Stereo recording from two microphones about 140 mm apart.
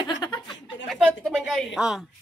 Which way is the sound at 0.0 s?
35° left (ahead or behind).